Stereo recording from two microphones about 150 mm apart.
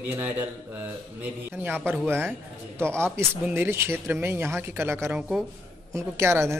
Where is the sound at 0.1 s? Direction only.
15° right (ahead or behind).